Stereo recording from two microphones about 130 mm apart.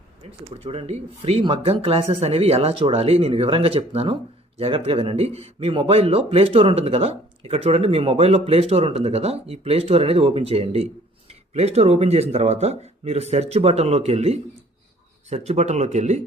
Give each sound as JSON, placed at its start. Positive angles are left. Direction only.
{"t": 0.6, "sound": "speech", "side_deg": -50}